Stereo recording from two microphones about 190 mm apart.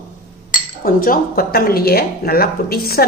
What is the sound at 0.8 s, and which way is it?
A woman's voice, 50° left (ahead or behind).